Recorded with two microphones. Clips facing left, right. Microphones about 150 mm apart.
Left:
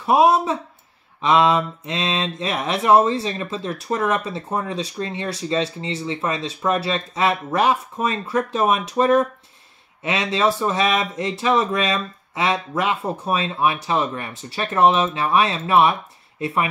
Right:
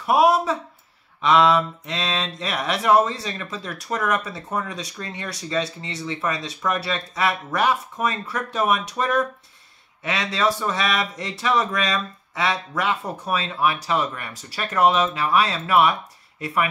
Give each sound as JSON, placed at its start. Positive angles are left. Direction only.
{"t": 0.0, "sound": "speech", "side_deg": 25}